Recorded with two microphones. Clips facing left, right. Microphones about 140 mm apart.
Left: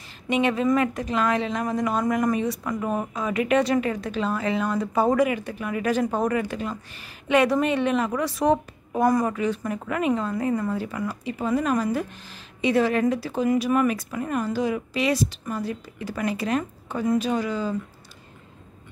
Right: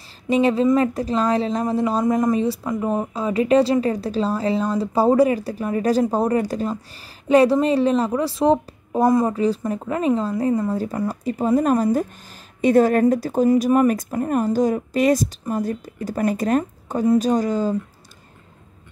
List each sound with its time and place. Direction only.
0.3 s speech: 30° right (ahead or behind)